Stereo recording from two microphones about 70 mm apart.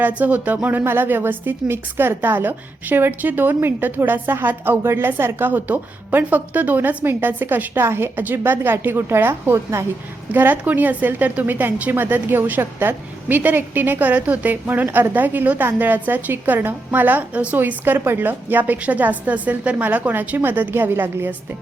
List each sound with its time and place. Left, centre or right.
0.0 s a woman's voice: right
10.3 s a woman's voice: right